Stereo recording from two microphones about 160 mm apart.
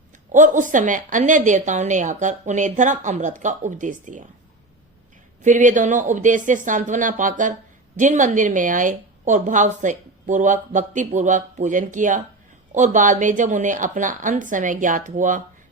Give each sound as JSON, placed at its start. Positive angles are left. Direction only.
{"t": 0.3, "sound": "a woman's voice", "side_deg": -50}
{"t": 5.4, "sound": "a woman's voice", "side_deg": -50}